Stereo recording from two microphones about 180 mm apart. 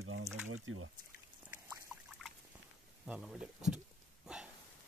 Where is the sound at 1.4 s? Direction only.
10° right (ahead or behind).